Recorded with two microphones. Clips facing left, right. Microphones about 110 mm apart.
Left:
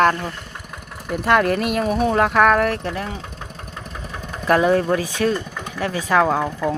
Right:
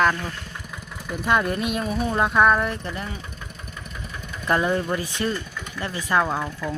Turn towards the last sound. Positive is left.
turn(degrees=65)  # may be behind; listen again after turning